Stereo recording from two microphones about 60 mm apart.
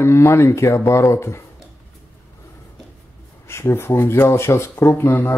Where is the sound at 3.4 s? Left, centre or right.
Left.